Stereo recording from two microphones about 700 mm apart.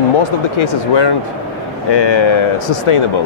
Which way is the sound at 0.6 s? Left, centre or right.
Left.